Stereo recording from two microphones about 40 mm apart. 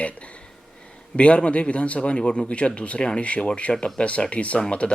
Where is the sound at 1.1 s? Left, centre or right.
Left.